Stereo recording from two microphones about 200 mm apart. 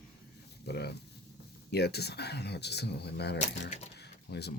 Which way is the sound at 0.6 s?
55° left (ahead or behind).